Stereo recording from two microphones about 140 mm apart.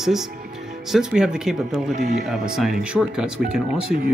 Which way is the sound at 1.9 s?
60° right (ahead or behind).